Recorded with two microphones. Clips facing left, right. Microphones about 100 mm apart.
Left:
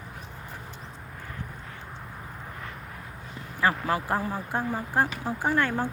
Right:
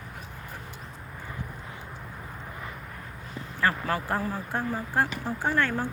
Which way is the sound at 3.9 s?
15° left (ahead or behind).